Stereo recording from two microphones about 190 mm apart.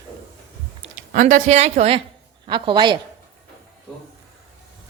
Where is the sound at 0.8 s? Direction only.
40° right (ahead or behind); by 3.0 s 25° right (ahead or behind).